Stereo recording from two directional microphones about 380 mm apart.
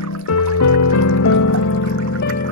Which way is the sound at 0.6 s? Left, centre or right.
Left.